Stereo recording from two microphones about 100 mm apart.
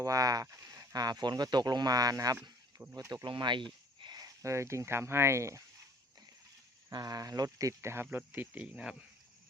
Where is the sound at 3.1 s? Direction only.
50° right (ahead or behind); by 5.6 s 30° right (ahead or behind).